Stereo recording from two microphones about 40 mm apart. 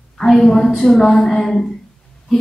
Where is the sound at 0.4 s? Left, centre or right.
Centre.